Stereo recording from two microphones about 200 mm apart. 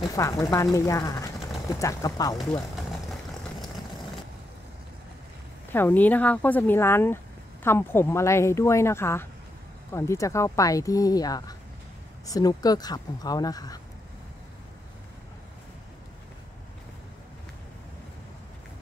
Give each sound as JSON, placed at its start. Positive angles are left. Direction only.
{"t": 0.1, "sound": "speech", "side_deg": 15}
{"t": 5.7, "sound": "speech", "side_deg": 10}